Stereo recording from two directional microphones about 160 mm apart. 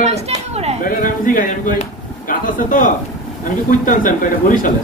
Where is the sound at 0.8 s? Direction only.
60° left (ahead or behind).